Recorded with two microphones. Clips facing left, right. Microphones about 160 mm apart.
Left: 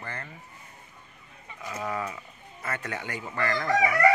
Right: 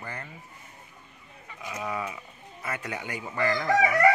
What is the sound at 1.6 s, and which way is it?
Speech, 10° right (ahead or behind).